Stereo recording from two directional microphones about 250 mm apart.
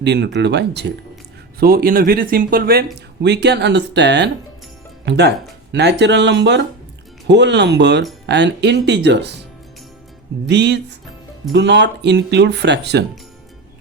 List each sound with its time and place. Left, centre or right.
0.0 s speech: right
10.4 s speech: right